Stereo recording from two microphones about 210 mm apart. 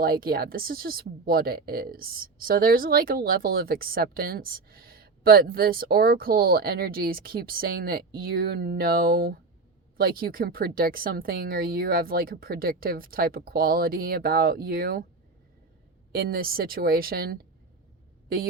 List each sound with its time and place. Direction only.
0.0 s speech: 45° right (ahead or behind)
16.1 s speech: 45° right (ahead or behind)